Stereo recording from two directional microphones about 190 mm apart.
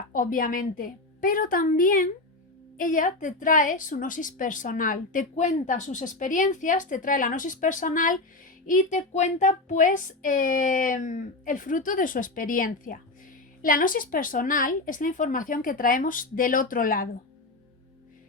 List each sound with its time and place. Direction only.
0.1 s a woman's voice: 45° left (ahead or behind)